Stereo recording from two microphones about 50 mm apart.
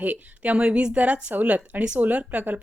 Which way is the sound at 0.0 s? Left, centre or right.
Right.